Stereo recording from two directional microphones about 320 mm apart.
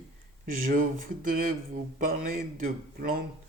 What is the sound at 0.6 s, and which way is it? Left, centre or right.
A man's voice, right.